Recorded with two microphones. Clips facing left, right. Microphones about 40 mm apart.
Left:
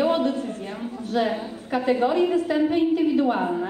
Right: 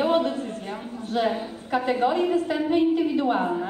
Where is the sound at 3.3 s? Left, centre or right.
Centre.